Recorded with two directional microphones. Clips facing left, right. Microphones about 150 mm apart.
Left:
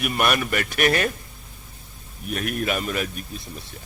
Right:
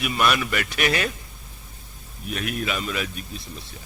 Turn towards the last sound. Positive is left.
turn(degrees=45)  # may be behind; listen again after turning